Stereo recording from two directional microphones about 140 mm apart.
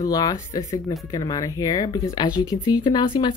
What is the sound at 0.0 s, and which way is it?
Speech, 25° left (ahead or behind).